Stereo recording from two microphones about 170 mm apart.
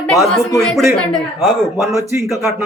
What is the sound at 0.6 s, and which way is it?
Speech, centre (ahead or behind).